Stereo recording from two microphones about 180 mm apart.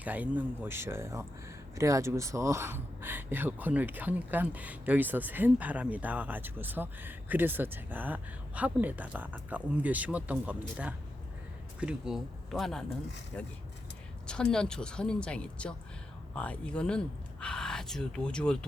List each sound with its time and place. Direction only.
0.0 s a woman's voice: 10° right (ahead or behind)